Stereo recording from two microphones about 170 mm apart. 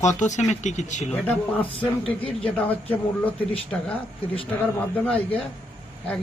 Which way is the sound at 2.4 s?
10° left (ahead or behind).